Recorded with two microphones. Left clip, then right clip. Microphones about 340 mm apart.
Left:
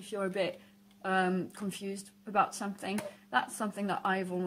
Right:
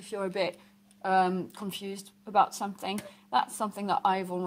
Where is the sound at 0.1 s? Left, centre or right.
Centre.